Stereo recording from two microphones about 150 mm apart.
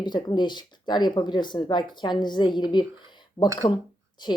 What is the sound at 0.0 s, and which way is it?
A woman's voice, 30° left (ahead or behind).